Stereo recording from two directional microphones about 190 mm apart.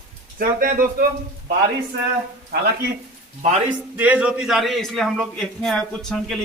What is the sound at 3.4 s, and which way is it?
Speech, 35° right (ahead or behind).